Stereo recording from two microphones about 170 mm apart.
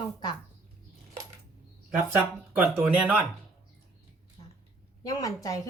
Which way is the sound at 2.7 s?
10° right (ahead or behind).